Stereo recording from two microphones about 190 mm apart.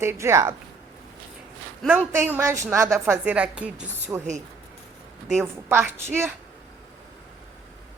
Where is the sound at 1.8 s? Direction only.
10° right (ahead or behind).